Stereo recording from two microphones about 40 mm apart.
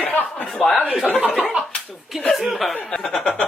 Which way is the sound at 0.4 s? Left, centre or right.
Centre.